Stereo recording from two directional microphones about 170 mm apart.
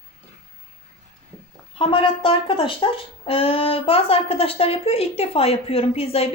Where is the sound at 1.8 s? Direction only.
30° left (ahead or behind).